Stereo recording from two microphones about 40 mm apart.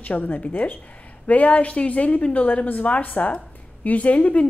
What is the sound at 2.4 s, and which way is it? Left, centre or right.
A woman's voice, left.